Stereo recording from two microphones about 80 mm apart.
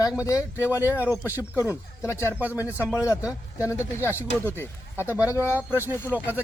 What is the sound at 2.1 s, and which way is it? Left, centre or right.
Speech, left.